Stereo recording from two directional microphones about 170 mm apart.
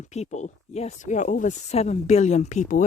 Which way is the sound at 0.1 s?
40° left (ahead or behind).